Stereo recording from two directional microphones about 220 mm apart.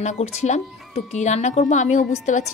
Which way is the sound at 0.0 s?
30° left (ahead or behind).